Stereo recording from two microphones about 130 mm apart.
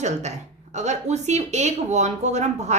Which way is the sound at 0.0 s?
60° right (ahead or behind).